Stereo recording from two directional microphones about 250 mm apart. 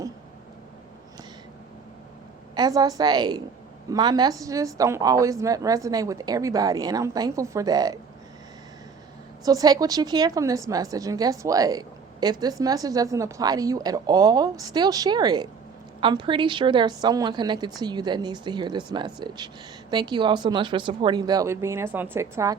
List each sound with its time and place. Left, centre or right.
2.6 s a woman's voice: centre
9.4 s a woman's voice: centre